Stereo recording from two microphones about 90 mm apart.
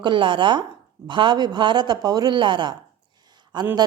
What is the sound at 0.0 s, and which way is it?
Speech, 65° right (ahead or behind).